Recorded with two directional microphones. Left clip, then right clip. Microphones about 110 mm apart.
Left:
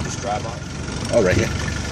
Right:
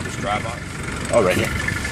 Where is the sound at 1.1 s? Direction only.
30° left (ahead or behind).